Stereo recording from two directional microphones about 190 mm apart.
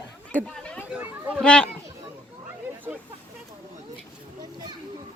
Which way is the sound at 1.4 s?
5° left (ahead or behind).